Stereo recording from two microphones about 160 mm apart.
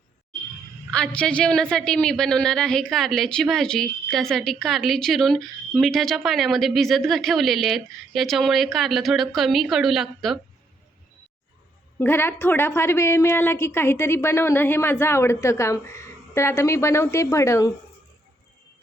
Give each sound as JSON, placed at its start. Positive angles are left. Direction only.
{"t": 0.9, "sound": "a woman's voice", "side_deg": 5}
{"t": 11.9, "sound": "a woman's voice", "side_deg": 15}